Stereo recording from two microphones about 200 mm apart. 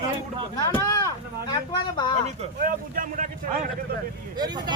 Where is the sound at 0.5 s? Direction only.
20° left (ahead or behind).